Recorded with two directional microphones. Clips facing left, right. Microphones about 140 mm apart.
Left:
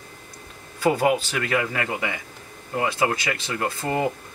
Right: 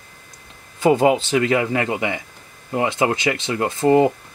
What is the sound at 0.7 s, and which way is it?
Speech, 20° right (ahead or behind).